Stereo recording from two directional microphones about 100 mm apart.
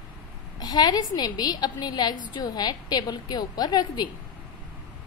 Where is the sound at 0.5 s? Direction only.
40° left (ahead or behind).